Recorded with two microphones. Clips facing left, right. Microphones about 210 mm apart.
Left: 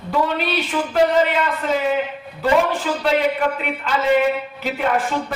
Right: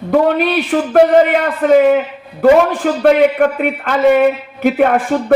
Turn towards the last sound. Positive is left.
turn(degrees=-55)  # may be behind; listen again after turning